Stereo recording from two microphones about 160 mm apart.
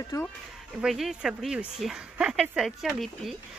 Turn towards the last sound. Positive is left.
turn(degrees=0)  # may be behind; listen again after turning